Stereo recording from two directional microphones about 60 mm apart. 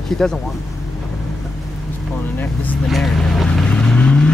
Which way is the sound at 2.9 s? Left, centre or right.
Centre.